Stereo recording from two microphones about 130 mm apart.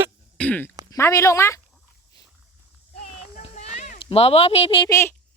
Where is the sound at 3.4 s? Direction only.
60° left (ahead or behind).